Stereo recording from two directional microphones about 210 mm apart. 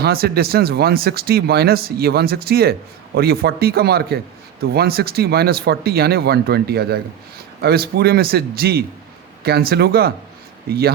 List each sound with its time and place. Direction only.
0.0 s speech: 45° right (ahead or behind)